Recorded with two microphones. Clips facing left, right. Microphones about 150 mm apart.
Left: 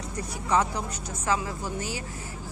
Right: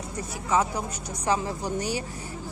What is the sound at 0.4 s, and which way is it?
A woman's voice, 5° right (ahead or behind).